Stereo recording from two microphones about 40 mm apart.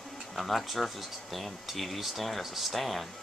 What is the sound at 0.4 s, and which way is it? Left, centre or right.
Speech, centre.